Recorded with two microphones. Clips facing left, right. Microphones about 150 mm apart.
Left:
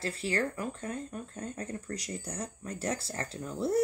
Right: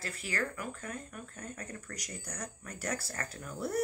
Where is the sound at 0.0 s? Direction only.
30° left (ahead or behind).